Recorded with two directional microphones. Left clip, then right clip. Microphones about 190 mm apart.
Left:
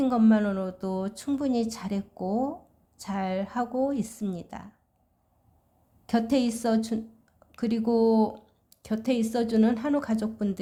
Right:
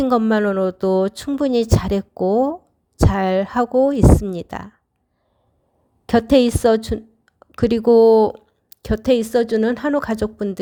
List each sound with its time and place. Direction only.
0.1 s speech: 40° right (ahead or behind)
6.1 s a woman's voice: 40° right (ahead or behind)